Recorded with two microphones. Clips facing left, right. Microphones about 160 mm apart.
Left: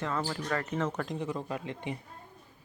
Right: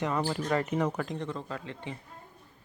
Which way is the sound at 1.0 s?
Centre (ahead or behind).